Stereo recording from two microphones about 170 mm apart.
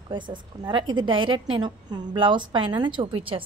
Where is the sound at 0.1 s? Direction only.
30° right (ahead or behind).